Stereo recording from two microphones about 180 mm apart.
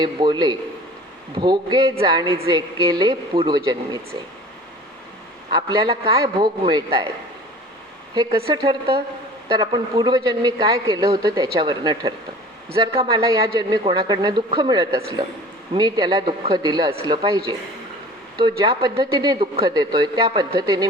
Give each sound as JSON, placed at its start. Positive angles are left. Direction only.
{"t": 0.0, "sound": "a woman's voice", "side_deg": -25}
{"t": 5.5, "sound": "a woman's voice", "side_deg": -25}
{"t": 8.1, "sound": "a woman's voice", "side_deg": -25}